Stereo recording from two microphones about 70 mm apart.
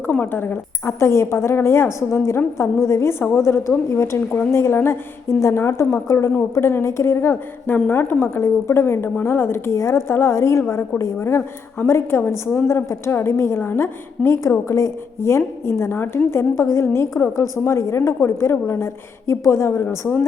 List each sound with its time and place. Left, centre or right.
0.1 s a woman's voice: left